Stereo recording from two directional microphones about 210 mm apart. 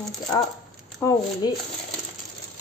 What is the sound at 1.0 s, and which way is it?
Speech, 15° left (ahead or behind).